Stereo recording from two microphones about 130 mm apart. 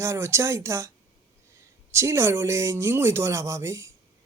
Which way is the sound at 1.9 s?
20° right (ahead or behind).